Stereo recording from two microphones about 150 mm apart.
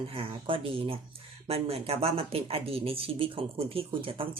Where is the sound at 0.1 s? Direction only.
40° right (ahead or behind).